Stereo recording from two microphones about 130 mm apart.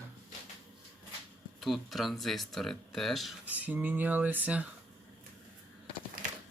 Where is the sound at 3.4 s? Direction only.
10° right (ahead or behind).